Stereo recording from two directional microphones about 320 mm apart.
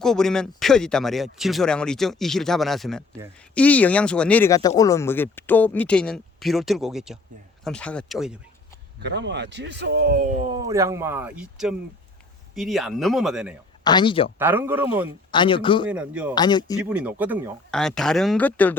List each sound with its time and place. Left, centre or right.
0.0 s speech: centre
9.0 s speech: right; by 13.5 s centre
13.8 s speech: centre
14.3 s speech: centre
15.3 s speech: centre
15.9 s speech: centre
16.3 s speech: centre
16.9 s speech: centre